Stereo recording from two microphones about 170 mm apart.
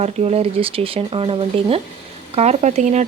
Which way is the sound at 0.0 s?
40° right (ahead or behind).